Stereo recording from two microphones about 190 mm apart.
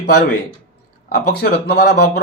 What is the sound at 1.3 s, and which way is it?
Speech, 55° left (ahead or behind).